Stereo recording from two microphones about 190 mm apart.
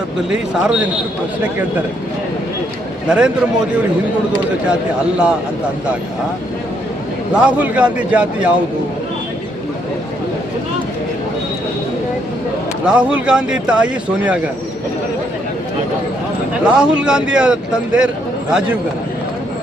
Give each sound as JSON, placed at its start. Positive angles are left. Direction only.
{"t": 0.3, "sound": "speech", "side_deg": -5}
{"t": 3.1, "sound": "speech", "side_deg": -5}
{"t": 4.7, "sound": "speech", "side_deg": -5}
{"t": 7.3, "sound": "a man's voice", "side_deg": -5}
{"t": 12.8, "sound": "speech", "side_deg": -5}
{"t": 16.6, "sound": "speech", "side_deg": -5}